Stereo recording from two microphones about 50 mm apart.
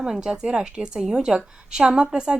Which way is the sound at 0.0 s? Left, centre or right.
Centre.